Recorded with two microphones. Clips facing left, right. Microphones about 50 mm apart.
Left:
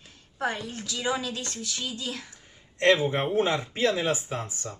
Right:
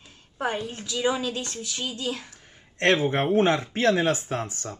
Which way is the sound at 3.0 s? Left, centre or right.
Right.